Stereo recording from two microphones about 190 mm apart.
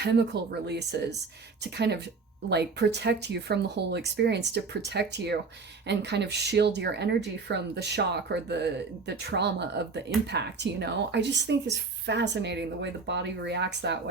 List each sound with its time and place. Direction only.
0.0 s speech: 60° right (ahead or behind)